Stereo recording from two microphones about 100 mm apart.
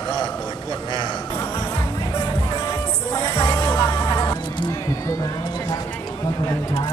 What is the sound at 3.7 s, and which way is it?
Music, 50° left (ahead or behind).